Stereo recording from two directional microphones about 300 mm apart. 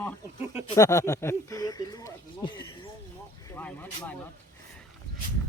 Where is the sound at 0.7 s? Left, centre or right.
Centre.